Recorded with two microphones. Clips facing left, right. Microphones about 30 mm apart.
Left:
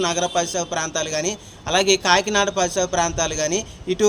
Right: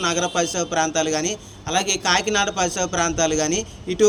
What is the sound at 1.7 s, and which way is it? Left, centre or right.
Speech, left.